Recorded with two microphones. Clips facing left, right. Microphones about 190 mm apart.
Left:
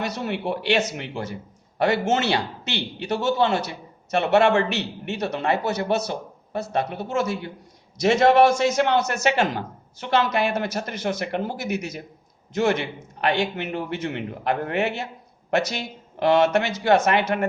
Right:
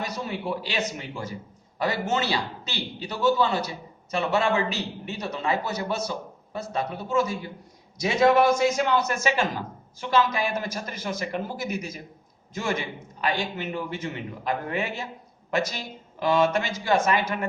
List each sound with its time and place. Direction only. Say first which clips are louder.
0.0 s a man's voice: left 4 dB; 65° left (ahead or behind)